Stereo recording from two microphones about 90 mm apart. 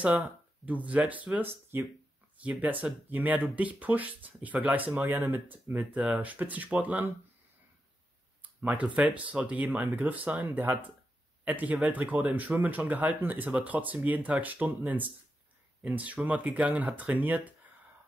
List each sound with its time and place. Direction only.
0.7 s speech: 15° right (ahead or behind)
2.6 s speech: 15° right (ahead or behind)
8.4 s speech: 15° right (ahead or behind)